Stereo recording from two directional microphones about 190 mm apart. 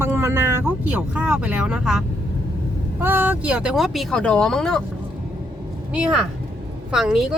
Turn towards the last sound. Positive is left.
turn(degrees=0)  # may be behind; listen again after turning